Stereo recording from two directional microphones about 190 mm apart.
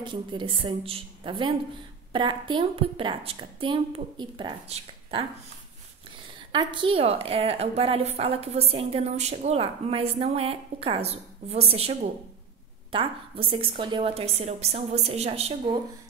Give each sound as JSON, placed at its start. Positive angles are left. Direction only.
{"t": 0.0, "sound": "a woman's voice", "side_deg": -25}
{"t": 6.5, "sound": "a woman's voice", "side_deg": -25}